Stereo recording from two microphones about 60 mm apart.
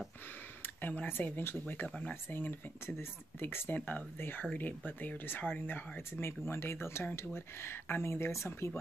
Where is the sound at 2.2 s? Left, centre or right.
Left.